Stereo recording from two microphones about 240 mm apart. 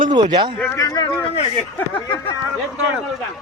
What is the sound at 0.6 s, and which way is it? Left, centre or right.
Speech, centre.